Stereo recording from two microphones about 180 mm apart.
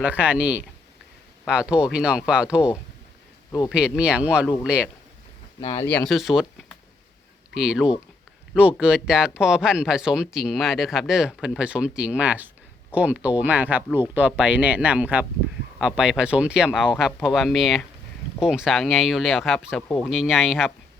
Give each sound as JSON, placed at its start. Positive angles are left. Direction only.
{"t": 0.0, "sound": "speech", "side_deg": -10}
{"t": 5.5, "sound": "speech", "side_deg": 20}
{"t": 6.1, "sound": "speech", "side_deg": 0}